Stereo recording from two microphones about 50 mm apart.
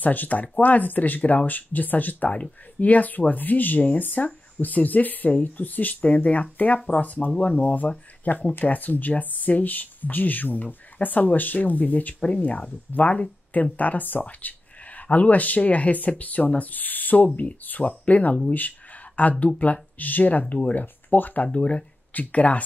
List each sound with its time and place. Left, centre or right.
0.0 s speech: left
19.4 s speech: left
21.5 s speech: left